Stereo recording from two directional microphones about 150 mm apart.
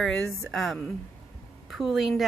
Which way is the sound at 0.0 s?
Centre (ahead or behind).